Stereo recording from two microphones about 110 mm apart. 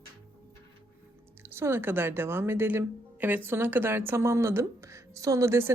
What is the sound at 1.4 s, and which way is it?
Speech, 25° right (ahead or behind).